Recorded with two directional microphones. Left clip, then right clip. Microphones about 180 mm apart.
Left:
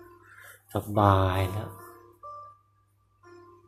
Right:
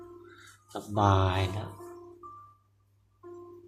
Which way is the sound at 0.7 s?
15° left (ahead or behind).